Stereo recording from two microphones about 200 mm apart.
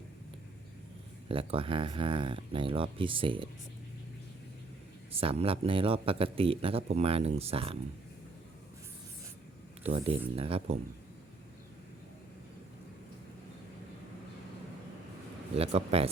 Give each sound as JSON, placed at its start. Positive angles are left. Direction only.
{"t": 1.3, "sound": "speech", "side_deg": -25}
{"t": 5.2, "sound": "speech", "side_deg": -30}
{"t": 9.8, "sound": "speech", "side_deg": -30}
{"t": 15.5, "sound": "speech", "side_deg": -30}